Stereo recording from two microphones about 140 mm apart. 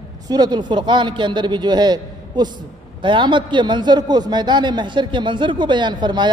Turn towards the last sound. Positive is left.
turn(degrees=-30)  # may be behind; listen again after turning